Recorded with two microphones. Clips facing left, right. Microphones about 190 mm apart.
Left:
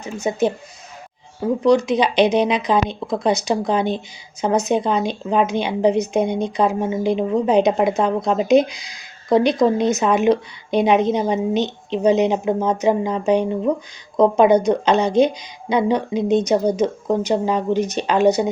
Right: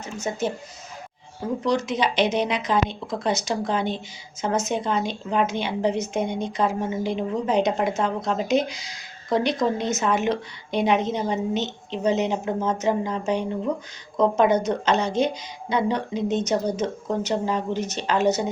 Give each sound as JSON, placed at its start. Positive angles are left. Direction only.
{"t": 0.3, "sound": "a woman's voice", "side_deg": 15}
{"t": 1.6, "sound": "a woman's voice", "side_deg": 15}